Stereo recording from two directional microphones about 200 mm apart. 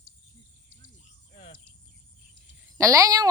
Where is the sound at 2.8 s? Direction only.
15° right (ahead or behind).